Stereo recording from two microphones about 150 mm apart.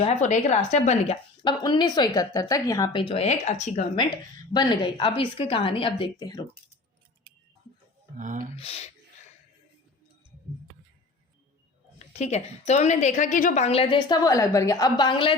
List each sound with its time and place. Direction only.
0.0 s a woman's voice: 50° left (ahead or behind)
1.5 s speech: 30° left (ahead or behind); by 3.8 s 50° left (ahead or behind)
3.9 s a woman's voice: 30° left (ahead or behind)
8.2 s speech: 60° right (ahead or behind)
8.5 s a woman's voice: 45° left (ahead or behind)
12.1 s a woman's voice: 45° left (ahead or behind)
14.3 s speech: 20° left (ahead or behind)